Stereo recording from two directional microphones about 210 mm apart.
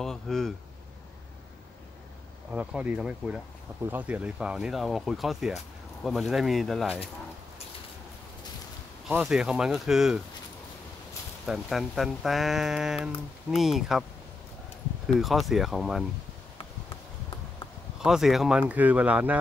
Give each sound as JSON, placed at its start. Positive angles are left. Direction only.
{"t": 0.0, "sound": "speech", "side_deg": 0}
{"t": 2.5, "sound": "speech", "side_deg": -5}
{"t": 9.0, "sound": "speech", "side_deg": -5}
{"t": 11.4, "sound": "speech", "side_deg": 0}
{"t": 15.1, "sound": "speech", "side_deg": 0}
{"t": 18.0, "sound": "speech", "side_deg": 0}